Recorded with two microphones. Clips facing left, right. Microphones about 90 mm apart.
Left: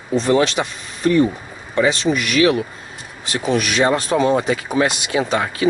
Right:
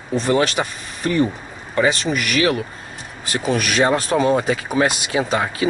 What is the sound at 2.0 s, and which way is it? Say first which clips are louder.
Speech: left 3 dB; 50° right (ahead or behind).